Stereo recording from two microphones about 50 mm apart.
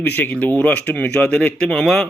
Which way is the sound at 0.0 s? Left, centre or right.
Left.